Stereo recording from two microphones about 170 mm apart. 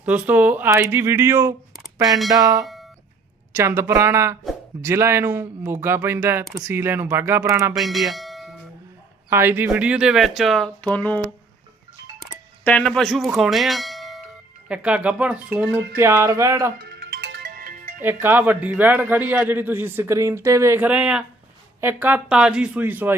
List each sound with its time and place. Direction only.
0.0 s a man's voice: 10° right (ahead or behind)
7.8 s speech: centre (ahead or behind)
9.3 s speech: 10° right (ahead or behind); by 11.2 s 10° left (ahead or behind)
12.6 s speech: 5° left (ahead or behind)
13.3 s bell: centre (ahead or behind)
14.7 s a man's voice: 5° right (ahead or behind)
16.7 s music: 75° right (ahead or behind); by 18.0 s 55° right (ahead or behind)
18.0 s a man's voice: 10° right (ahead or behind)